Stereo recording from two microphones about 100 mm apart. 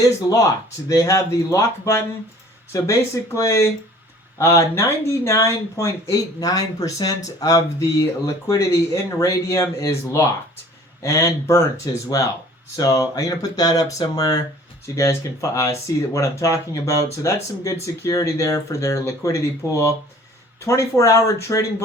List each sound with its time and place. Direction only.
0.0 s speech: 35° left (ahead or behind)
12.7 s speech: 35° left (ahead or behind)